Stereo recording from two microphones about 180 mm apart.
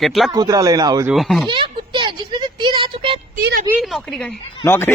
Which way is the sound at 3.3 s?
55° right (ahead or behind).